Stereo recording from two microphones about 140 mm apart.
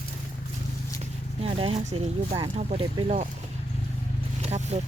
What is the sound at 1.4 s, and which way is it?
Speech, 45° right (ahead or behind).